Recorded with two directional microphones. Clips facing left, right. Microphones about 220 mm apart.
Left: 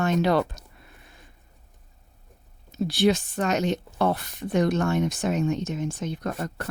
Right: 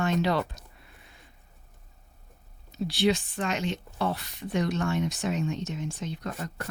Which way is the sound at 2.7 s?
45° left (ahead or behind).